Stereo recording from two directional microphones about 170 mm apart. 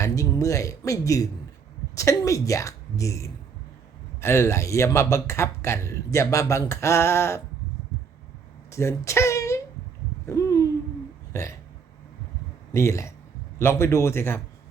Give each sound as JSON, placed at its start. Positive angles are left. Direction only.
{"t": 0.0, "sound": "a woman's voice", "side_deg": 20}
{"t": 8.7, "sound": "a sound", "side_deg": 15}
{"t": 10.2, "sound": "owl", "side_deg": 20}
{"t": 11.3, "sound": "speech", "side_deg": 15}
{"t": 12.7, "sound": "speech", "side_deg": 15}